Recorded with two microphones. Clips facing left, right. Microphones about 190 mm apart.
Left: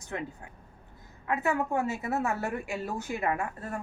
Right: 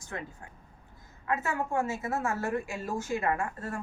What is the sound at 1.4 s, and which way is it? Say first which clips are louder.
A woman's voice: left 5 dB; 15° left (ahead or behind).